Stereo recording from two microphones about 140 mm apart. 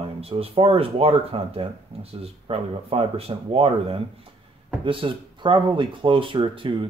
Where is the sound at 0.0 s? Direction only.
40° right (ahead or behind).